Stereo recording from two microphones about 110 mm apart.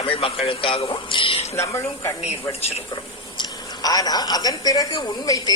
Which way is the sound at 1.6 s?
25° left (ahead or behind).